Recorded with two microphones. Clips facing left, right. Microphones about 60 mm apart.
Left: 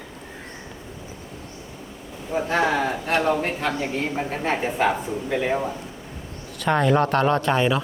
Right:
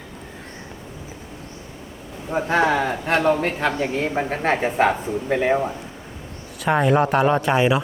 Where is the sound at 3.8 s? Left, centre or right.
Right.